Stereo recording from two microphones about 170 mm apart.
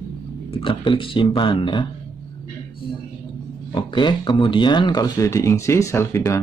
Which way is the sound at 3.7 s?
25° left (ahead or behind).